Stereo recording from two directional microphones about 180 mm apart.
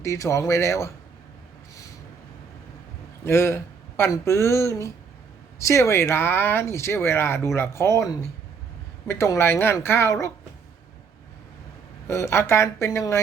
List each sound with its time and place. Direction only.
0.0 s speech: 15° left (ahead or behind)
3.2 s speech: 15° left (ahead or behind)
12.0 s speech: 15° left (ahead or behind)